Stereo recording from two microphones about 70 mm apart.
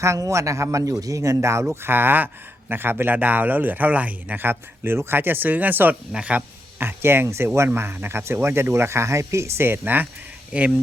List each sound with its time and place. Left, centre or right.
0.0 s speech: right
1.7 s speech: right
6.1 s speech: centre
6.7 s speech: right